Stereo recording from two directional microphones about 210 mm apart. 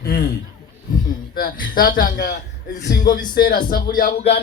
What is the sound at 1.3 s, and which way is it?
A man's voice, 45° left (ahead or behind).